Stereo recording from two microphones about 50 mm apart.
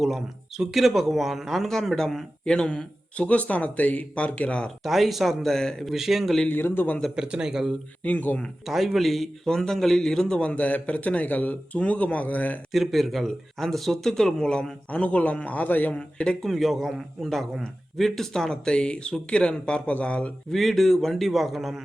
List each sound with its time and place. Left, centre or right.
0.0 s speech: centre
2.4 s a man's voice: centre
4.8 s speech: centre
5.8 s speech: centre
6.5 s a man's voice: left
7.2 s speech: centre
8.0 s a man's voice: left
8.6 s a man's voice: centre; by 12.5 s left
12.7 s speech: centre
14.8 s a man's voice: left
15.9 s a man's voice: left
16.4 s a man's voice: centre; by 20.3 s left
20.5 s speech: centre